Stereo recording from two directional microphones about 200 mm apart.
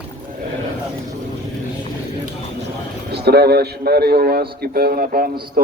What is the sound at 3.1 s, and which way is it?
A man's voice, 55° right (ahead or behind).